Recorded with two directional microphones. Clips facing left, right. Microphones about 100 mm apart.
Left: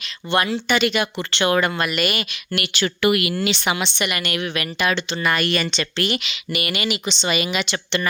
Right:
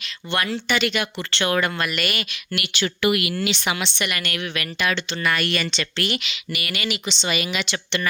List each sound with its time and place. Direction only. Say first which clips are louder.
0.7 s speech: left 3 dB; 20° left (ahead or behind)
2.6 s speech: left 2 dB; 45° left (ahead or behind)
3.9 s speech: left 3 dB; 15° left (ahead or behind)